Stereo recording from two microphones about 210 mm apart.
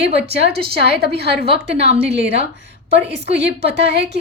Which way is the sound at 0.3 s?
50° right (ahead or behind).